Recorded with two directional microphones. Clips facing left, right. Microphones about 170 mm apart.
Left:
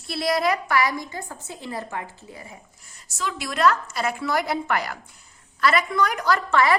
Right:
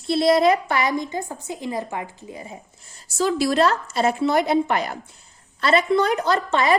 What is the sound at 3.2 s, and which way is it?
A woman's voice, 35° right (ahead or behind).